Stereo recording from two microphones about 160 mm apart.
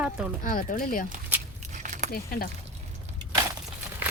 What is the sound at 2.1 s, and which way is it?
Speech, 70° left (ahead or behind).